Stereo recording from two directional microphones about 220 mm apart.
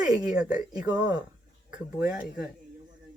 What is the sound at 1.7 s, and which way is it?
Speech, 5° right (ahead or behind).